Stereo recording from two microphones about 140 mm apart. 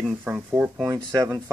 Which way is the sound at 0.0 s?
10° right (ahead or behind).